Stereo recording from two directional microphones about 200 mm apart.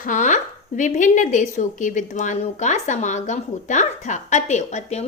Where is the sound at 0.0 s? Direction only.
40° left (ahead or behind).